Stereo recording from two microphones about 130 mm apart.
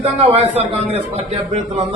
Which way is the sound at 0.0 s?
50° right (ahead or behind).